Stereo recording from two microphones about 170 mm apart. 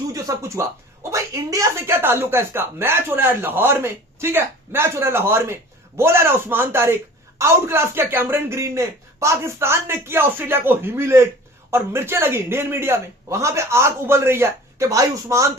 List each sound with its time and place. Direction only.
0.1 s speech: 20° right (ahead or behind)